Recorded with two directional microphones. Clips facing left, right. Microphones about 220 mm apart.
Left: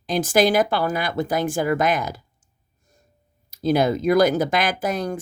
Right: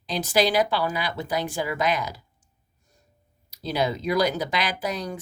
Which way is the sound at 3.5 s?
50° left (ahead or behind).